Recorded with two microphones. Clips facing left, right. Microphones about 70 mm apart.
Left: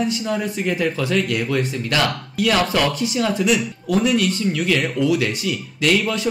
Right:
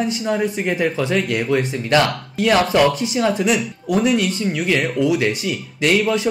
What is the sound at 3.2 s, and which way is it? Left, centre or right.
Speech, right.